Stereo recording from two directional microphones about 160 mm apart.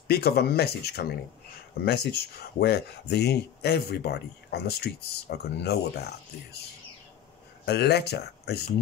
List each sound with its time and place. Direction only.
0.1 s speech: 80° left
7.6 s speech: 90° left